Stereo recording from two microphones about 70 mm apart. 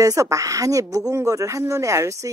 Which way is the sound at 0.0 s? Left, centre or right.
Right.